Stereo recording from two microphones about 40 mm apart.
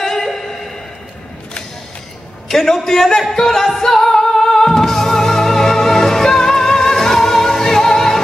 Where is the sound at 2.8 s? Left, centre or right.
Centre.